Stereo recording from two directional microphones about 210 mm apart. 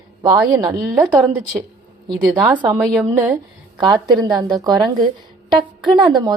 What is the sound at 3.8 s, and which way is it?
A woman's voice, 20° right (ahead or behind).